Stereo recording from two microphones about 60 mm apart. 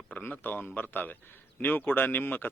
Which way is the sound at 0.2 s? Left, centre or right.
Left.